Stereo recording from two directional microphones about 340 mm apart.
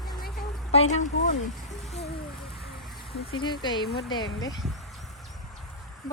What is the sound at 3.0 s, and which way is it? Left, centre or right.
Speech, centre.